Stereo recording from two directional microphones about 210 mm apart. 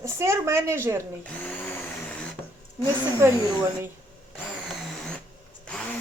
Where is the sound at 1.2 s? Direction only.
5° left (ahead or behind).